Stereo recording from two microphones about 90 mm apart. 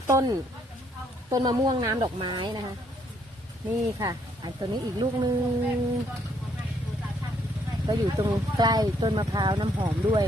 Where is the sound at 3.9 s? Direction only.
40° right (ahead or behind).